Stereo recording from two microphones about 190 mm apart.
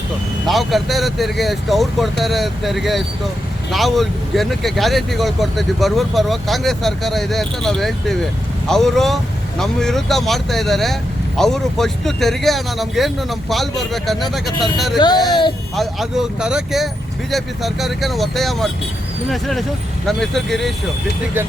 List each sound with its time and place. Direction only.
0.4 s speech: centre (ahead or behind)
14.9 s speech: 20° left (ahead or behind)
15.7 s speech: centre (ahead or behind)